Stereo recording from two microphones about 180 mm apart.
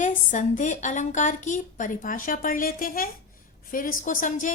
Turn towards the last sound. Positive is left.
turn(degrees=45)  # may be behind; listen again after turning